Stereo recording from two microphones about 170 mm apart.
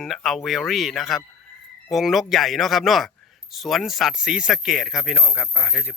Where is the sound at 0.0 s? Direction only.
Centre (ahead or behind).